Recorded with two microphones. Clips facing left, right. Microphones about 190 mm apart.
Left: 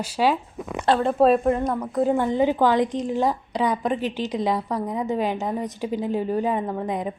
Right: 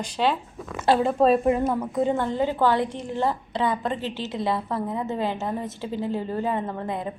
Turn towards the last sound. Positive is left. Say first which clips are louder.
# left 3 dB
turn(degrees=15)  # may be behind; listen again after turning